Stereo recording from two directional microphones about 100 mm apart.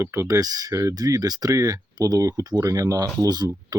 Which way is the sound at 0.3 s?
40° right (ahead or behind).